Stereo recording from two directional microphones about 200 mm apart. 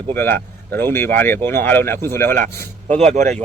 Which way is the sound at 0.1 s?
10° left (ahead or behind).